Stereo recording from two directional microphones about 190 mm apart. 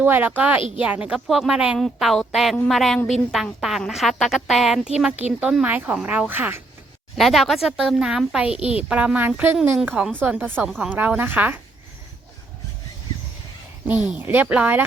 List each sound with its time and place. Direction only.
0.0 s speech: 10° right (ahead or behind)
13.8 s speech: 5° right (ahead or behind)